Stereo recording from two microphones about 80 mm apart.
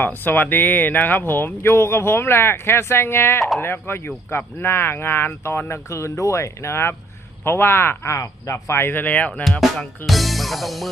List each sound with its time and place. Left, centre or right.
0.0 s speech: left
9.4 s speech: centre
10.1 s music: centre